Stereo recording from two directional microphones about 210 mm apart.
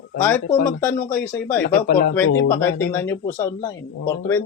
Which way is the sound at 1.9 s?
45° left (ahead or behind).